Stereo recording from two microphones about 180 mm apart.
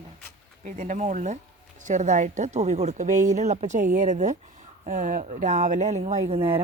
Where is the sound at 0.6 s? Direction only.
40° right (ahead or behind).